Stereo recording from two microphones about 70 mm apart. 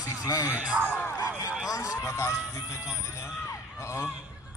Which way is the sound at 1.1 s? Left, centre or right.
Left.